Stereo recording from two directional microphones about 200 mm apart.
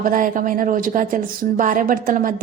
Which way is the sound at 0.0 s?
40° right (ahead or behind).